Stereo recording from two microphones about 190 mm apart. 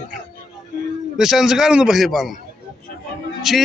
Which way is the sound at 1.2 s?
Centre (ahead or behind).